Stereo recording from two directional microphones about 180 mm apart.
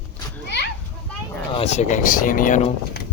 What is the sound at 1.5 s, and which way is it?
Speech, 35° left (ahead or behind).